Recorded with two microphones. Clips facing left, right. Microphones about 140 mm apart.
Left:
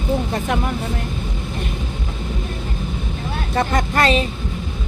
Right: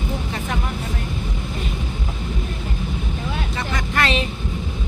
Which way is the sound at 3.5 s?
50° left (ahead or behind).